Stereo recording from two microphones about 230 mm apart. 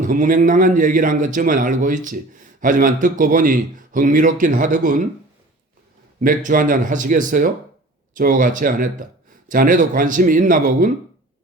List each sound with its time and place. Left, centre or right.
0.0 s a man's voice: right
6.1 s a man's voice: right